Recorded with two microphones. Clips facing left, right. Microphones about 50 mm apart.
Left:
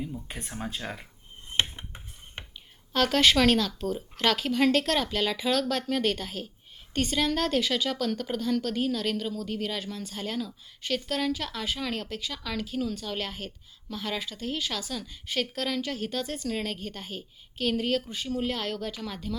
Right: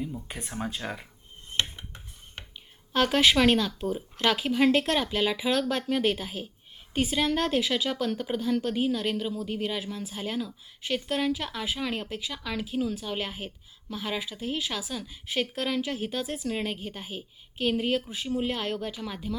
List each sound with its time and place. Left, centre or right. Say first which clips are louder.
0.3 s speech: right 2 dB; centre
1.7 s cutlery: left 1 dB; centre
2.9 s a woman's voice: even; centre